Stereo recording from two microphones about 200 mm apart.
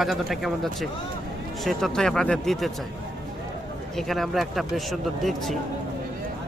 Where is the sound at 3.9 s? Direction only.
Centre (ahead or behind).